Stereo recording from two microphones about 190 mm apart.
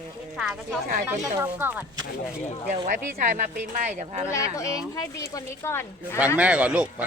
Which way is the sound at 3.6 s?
40° right (ahead or behind).